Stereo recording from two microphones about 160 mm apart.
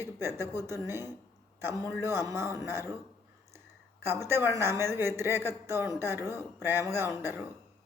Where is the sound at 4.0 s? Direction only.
15° right (ahead or behind).